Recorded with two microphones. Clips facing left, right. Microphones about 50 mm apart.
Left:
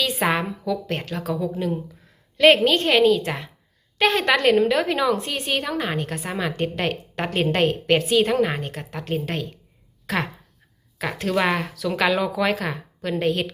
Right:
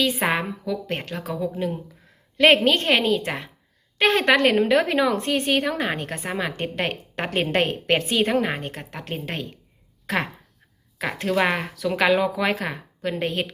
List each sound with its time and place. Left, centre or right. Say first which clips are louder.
0.0 s a woman's voice: even; centre
2.4 s a woman's voice: left 1 dB; right